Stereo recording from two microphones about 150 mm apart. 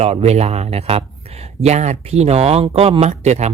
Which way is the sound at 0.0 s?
45° right (ahead or behind).